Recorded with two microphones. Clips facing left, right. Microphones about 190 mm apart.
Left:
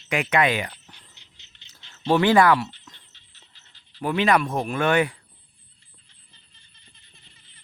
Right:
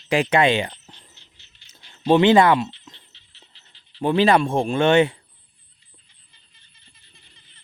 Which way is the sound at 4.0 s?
30° right (ahead or behind).